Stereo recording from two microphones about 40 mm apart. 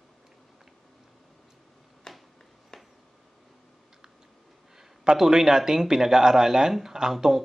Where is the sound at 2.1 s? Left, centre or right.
Centre.